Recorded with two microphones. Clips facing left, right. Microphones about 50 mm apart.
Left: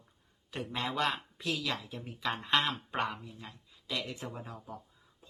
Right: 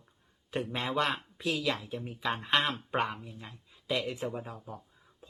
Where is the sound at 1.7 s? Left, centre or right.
Right.